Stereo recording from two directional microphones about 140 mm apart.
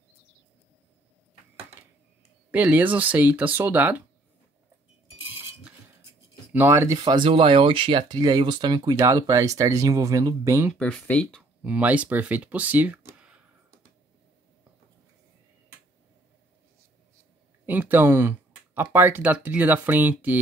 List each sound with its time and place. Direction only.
2.5 s speech: 10° right (ahead or behind)
6.5 s speech: 15° right (ahead or behind)
7.0 s speech: 35° right (ahead or behind); by 10.7 s 20° right (ahead or behind)
10.8 s speech: 5° left (ahead or behind)
11.6 s speech: 10° right (ahead or behind)
17.6 s speech: 15° right (ahead or behind)